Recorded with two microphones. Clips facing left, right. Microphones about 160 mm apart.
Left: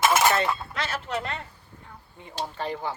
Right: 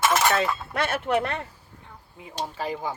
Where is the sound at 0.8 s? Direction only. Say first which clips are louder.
Right 6 dB; 55° right (ahead or behind).